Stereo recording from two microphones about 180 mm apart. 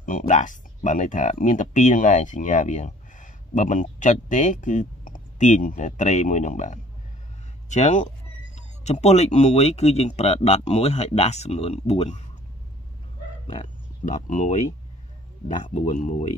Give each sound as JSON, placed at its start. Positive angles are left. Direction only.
{"t": 0.0, "sound": "speech", "side_deg": 45}
{"t": 13.6, "sound": "speech", "side_deg": 45}
{"t": 15.6, "sound": "speech", "side_deg": 35}